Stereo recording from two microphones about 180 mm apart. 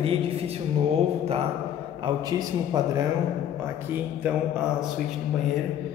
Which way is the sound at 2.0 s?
20° right (ahead or behind).